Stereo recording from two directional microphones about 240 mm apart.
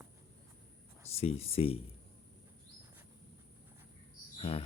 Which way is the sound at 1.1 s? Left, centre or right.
Left.